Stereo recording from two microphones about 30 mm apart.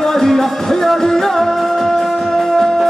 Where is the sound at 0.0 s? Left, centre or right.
Centre.